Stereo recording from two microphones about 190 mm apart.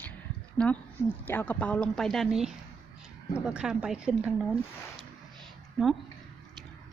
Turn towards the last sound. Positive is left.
turn(degrees=0)  # may be behind; listen again after turning